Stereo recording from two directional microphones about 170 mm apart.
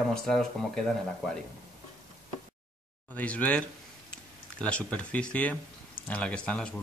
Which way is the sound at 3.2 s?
10° left (ahead or behind).